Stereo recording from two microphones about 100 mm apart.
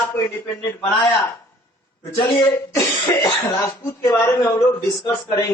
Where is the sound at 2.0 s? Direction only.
25° left (ahead or behind).